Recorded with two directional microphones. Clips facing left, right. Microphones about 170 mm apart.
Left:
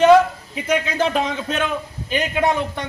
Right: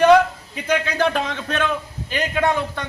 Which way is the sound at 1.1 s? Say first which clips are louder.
Left 2 dB; 10° left (ahead or behind).